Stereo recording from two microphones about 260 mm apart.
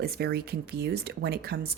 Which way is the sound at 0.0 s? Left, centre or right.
Right.